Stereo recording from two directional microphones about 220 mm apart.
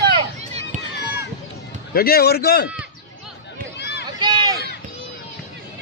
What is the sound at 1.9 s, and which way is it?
Speech, 45° left (ahead or behind).